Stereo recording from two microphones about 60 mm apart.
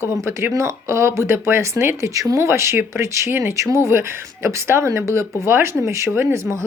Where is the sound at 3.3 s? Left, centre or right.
Right.